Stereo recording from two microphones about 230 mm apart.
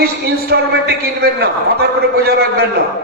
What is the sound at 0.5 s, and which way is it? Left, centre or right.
Speech, right.